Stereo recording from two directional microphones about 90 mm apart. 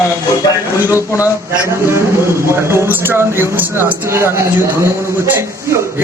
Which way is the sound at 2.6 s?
30° right (ahead or behind).